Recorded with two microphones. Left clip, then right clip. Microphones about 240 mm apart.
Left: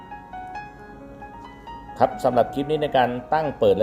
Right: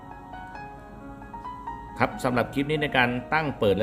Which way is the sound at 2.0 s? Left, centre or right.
Right.